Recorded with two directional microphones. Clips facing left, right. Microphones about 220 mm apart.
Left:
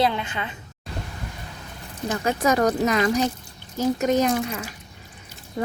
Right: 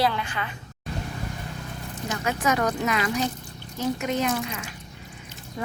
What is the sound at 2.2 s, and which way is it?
Speech, 35° left (ahead or behind).